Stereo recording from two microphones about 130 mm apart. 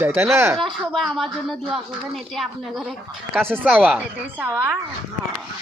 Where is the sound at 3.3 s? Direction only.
15° right (ahead or behind).